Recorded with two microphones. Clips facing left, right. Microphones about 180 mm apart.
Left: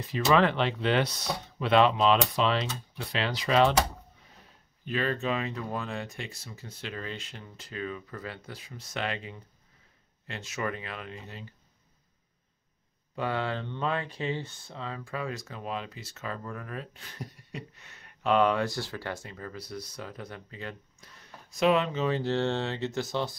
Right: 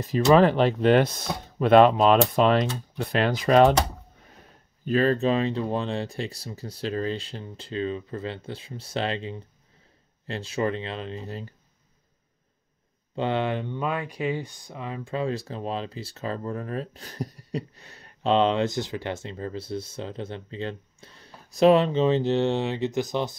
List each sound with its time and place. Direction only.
0.0 s speech: 40° right (ahead or behind)
4.8 s speech: 40° right (ahead or behind)
13.1 s speech: 25° right (ahead or behind)
15.0 s speech: 25° right (ahead or behind)